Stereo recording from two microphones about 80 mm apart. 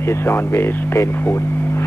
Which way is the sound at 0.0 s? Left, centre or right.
Left.